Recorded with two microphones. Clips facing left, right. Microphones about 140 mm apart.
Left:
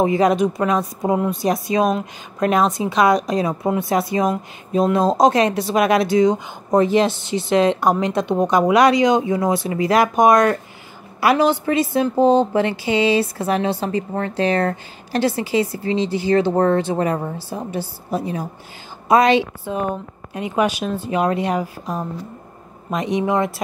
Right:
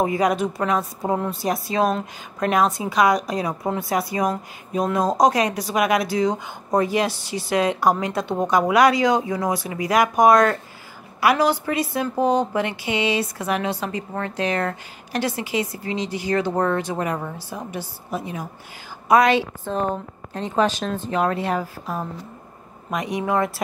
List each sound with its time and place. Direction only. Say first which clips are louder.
0.0 s a woman's voice: left 4 dB; 25° left (ahead or behind)
19.6 s a woman's voice: left 1 dB; 10° left (ahead or behind)